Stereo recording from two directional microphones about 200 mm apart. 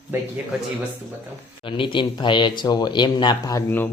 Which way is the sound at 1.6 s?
25° left (ahead or behind).